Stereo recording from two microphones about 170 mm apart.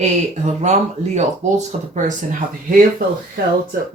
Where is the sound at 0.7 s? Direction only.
40° right (ahead or behind).